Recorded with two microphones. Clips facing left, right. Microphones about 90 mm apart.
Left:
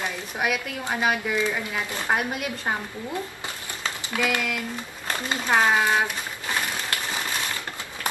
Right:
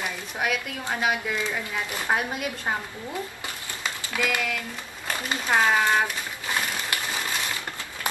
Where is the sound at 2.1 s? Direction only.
Centre (ahead or behind).